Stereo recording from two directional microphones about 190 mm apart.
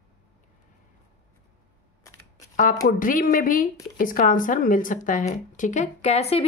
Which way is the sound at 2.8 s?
45° left (ahead or behind).